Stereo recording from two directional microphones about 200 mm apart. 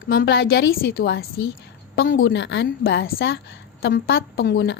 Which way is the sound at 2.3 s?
65° left (ahead or behind).